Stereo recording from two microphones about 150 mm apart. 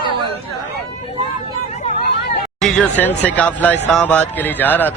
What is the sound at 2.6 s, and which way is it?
A man's voice, 10° left (ahead or behind).